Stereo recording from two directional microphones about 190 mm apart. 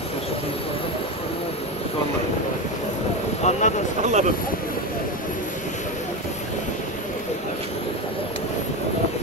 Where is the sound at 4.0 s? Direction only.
35° right (ahead or behind).